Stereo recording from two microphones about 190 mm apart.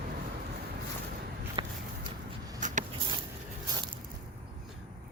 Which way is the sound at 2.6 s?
40° right (ahead or behind).